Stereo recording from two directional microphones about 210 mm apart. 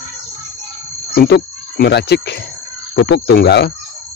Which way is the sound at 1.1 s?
50° left (ahead or behind).